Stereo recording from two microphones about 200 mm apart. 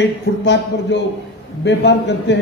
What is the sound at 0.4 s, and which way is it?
A man's voice, 60° left (ahead or behind).